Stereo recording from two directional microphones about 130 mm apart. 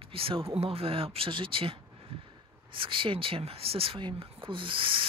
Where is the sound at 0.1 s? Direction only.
45° right (ahead or behind).